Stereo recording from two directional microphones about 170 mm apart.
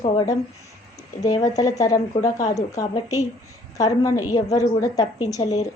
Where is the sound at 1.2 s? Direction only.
20° left (ahead or behind).